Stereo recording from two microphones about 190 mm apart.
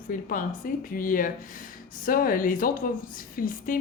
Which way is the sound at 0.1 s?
45° left (ahead or behind).